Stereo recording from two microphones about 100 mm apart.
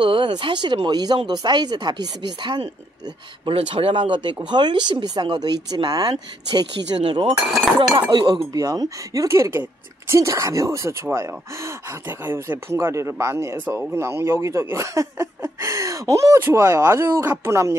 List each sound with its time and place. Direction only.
0.0 s speech: 50° right (ahead or behind)
7.1 s speech: 60° right (ahead or behind)
7.9 s speech: 50° right (ahead or behind)
8.5 s speech: 35° right (ahead or behind)